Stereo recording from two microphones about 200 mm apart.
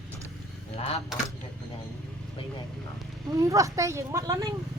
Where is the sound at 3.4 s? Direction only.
15° right (ahead or behind).